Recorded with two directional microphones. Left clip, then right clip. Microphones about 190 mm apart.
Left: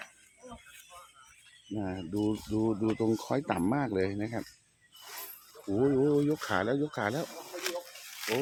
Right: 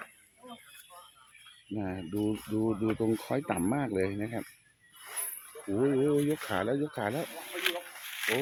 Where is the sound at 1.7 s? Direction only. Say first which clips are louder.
Even; centre (ahead or behind).